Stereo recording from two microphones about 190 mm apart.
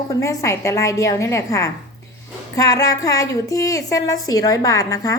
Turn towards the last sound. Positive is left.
turn(degrees=20)  # may be behind; listen again after turning